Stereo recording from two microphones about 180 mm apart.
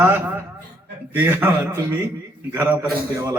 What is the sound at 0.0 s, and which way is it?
A man's voice, 10° right (ahead or behind).